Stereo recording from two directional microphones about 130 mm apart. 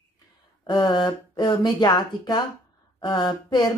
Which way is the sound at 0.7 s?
35° left (ahead or behind).